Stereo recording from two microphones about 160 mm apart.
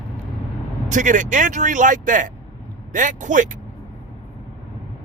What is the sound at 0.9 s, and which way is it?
Speech, 50° right (ahead or behind).